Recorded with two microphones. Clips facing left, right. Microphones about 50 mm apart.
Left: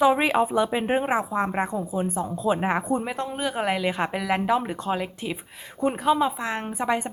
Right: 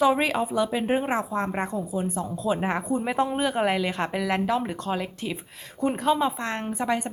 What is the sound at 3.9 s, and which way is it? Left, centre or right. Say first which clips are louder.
A woman's voice: left 2 dB; centre.